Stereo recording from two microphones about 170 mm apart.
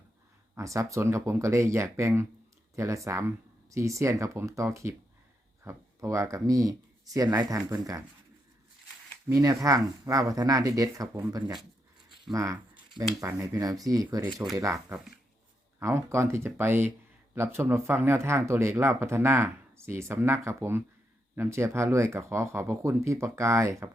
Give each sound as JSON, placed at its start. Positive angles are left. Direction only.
{"t": 0.5, "sound": "speech", "side_deg": -20}
{"t": 9.3, "sound": "speech", "side_deg": -20}